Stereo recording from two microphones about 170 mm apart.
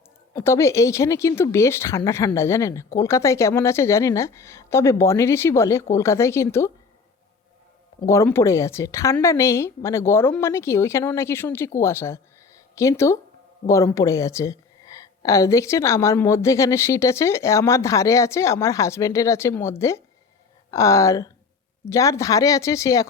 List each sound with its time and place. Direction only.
0.3 s a woman's voice: 15° left (ahead or behind)
8.0 s a woman's voice: 15° left (ahead or behind)